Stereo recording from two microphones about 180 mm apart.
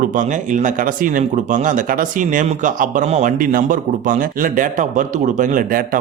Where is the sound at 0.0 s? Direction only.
45° right (ahead or behind).